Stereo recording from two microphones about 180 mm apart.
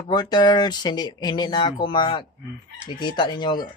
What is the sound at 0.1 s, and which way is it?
Speech, 25° left (ahead or behind).